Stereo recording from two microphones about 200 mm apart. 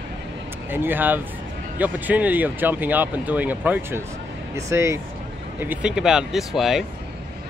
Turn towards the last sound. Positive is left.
turn(degrees=0)  # may be behind; listen again after turning